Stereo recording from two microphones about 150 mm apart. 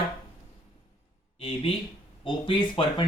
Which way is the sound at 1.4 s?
35° left (ahead or behind).